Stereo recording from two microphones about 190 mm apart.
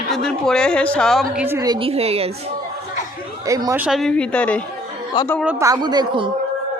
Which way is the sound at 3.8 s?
Centre (ahead or behind).